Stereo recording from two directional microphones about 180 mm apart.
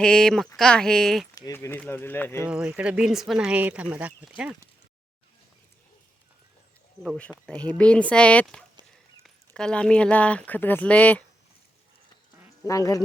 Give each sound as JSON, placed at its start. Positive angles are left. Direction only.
{"t": 0.0, "sound": "speech", "side_deg": 5}
{"t": 1.4, "sound": "speech", "side_deg": 15}
{"t": 2.4, "sound": "speech", "side_deg": -5}
{"t": 7.0, "sound": "speech", "side_deg": 5}
{"t": 12.6, "sound": "speech", "side_deg": 20}